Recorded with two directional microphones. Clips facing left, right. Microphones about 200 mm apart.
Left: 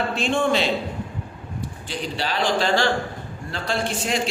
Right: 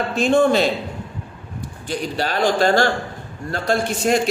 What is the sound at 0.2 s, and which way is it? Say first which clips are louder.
Speech: right 7 dB; 40° right (ahead or behind).